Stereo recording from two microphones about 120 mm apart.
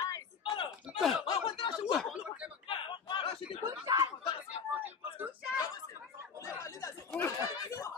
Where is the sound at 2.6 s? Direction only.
45° left (ahead or behind).